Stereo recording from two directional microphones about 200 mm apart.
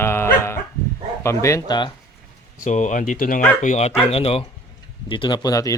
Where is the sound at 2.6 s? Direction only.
35° left (ahead or behind).